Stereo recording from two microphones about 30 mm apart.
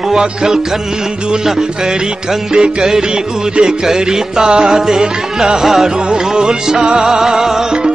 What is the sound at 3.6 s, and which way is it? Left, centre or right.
Music, centre.